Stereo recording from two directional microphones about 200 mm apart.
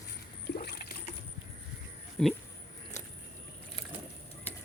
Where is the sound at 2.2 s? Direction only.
5° left (ahead or behind).